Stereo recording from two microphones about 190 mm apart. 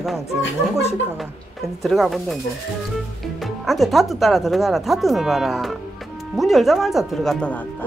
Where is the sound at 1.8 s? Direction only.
Centre (ahead or behind).